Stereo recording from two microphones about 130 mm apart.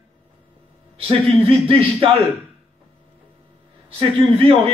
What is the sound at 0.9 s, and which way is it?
A man's voice, 45° right (ahead or behind).